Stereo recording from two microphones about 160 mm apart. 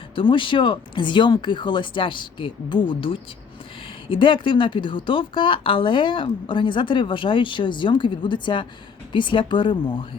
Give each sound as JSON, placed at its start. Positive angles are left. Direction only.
{"t": 0.2, "sound": "speech", "side_deg": 30}